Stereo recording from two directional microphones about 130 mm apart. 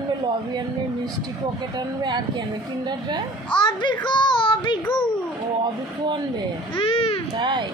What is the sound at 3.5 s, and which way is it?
Speech, 40° left (ahead or behind).